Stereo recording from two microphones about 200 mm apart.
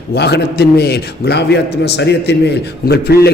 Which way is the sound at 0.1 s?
55° left (ahead or behind).